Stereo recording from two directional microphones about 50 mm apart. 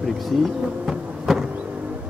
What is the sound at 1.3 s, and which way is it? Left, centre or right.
Vehicle, centre.